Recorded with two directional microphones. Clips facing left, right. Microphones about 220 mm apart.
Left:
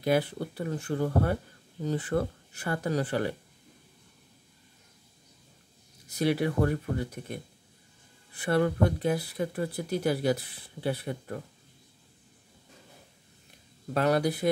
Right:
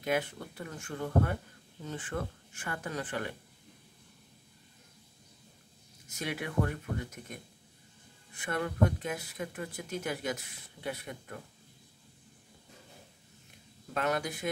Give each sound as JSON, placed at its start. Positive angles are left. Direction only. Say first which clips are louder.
{"t": 0.0, "sound": "speech", "louder": "left 6 dB", "side_deg": 35}
{"t": 6.0, "sound": "speech", "louder": "left 11 dB", "side_deg": 35}
{"t": 13.9, "sound": "speech", "louder": "left 7 dB", "side_deg": 35}